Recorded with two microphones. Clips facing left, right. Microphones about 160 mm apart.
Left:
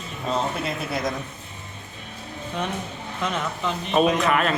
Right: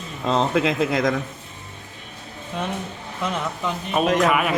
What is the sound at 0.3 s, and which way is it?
Speech, 90° right.